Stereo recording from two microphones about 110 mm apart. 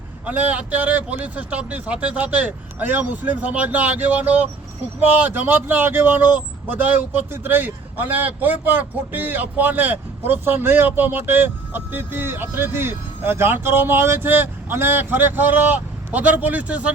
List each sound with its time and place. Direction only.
0.3 s speech: 15° right (ahead or behind)